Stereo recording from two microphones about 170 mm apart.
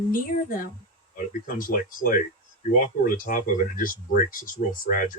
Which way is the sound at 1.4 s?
55° left (ahead or behind).